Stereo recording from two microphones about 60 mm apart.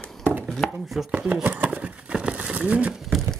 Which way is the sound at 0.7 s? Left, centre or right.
Centre.